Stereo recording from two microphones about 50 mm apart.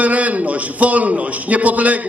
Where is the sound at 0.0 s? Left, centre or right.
Right.